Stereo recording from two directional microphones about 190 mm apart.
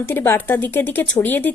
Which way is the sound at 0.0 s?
10° left (ahead or behind).